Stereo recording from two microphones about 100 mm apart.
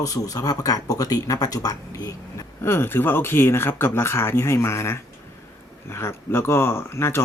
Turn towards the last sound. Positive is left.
turn(degrees=25)  # may be behind; listen again after turning